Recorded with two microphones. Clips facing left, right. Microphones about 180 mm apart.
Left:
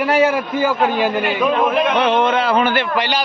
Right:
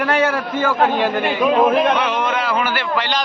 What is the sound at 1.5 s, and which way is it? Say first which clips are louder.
Speech: right 3 dB; 35° right (ahead or behind).